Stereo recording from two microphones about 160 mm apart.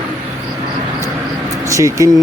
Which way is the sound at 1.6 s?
20° right (ahead or behind).